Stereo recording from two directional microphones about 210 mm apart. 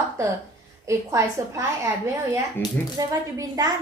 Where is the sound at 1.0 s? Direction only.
15° right (ahead or behind).